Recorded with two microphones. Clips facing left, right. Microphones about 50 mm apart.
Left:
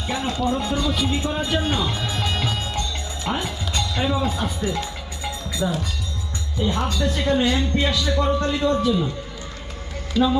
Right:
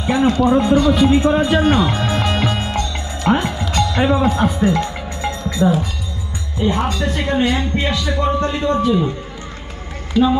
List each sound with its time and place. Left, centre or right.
0.0 s speech: right
1.5 s speech: centre
1.7 s music: right
3.2 s speech: right
5.4 s cowbell: centre
6.6 s speech: right
10.2 s speech: centre